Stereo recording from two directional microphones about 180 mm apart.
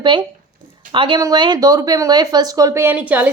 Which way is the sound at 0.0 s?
25° right (ahead or behind).